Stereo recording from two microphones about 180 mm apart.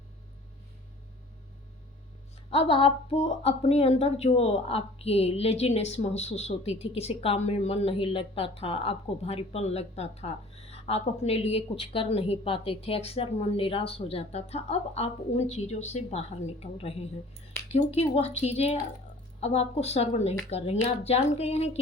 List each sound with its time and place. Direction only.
2.5 s speech: 30° left (ahead or behind)